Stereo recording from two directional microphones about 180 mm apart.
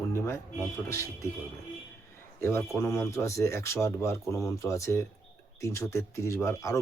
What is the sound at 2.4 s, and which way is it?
Speech, 15° left (ahead or behind).